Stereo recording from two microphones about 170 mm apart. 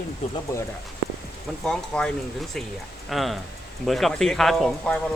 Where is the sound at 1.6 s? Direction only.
5° left (ahead or behind).